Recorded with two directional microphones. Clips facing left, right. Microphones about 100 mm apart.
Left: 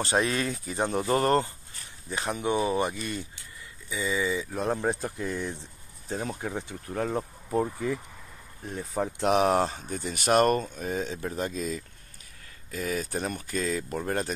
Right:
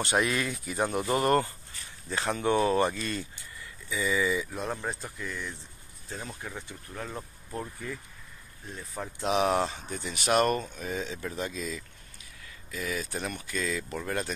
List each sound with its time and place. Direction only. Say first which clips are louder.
0.0 s speech: left 1 dB; 30° left (ahead or behind)
2.0 s speech: right 1 dB; 20° left (ahead or behind)
4.5 s speech: left 6 dB; 40° left (ahead or behind)
7.7 s speech: left 8 dB; 90° left
9.2 s speech: left 3 dB; 45° left (ahead or behind)